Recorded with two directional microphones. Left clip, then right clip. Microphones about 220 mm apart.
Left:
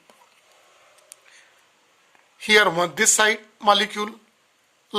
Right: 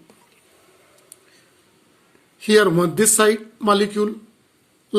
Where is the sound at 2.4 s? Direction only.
30° left (ahead or behind).